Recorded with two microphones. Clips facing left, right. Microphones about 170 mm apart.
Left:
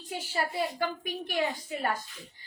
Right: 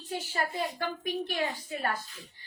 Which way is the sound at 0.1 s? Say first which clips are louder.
Even; 10° left (ahead or behind).